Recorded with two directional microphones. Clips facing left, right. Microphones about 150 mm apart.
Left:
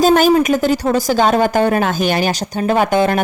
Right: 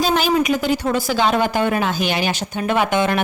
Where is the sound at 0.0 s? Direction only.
45° left (ahead or behind).